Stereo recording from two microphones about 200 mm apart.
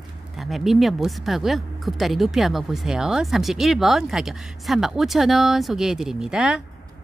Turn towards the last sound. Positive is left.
turn(degrees=-5)  # may be behind; listen again after turning